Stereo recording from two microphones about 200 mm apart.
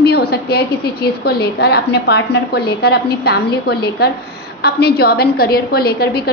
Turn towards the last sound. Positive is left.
turn(degrees=50)  # may be behind; listen again after turning